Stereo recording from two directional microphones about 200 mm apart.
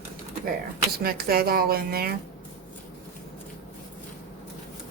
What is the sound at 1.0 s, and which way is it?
A woman's voice, 50° right (ahead or behind).